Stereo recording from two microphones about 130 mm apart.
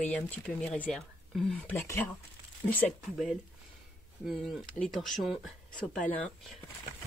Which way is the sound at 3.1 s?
5° right (ahead or behind).